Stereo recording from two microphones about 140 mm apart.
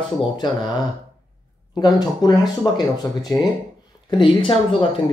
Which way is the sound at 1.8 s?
30° left (ahead or behind).